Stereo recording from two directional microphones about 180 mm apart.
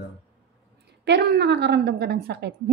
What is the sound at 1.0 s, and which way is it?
A woman's voice, 70° right (ahead or behind).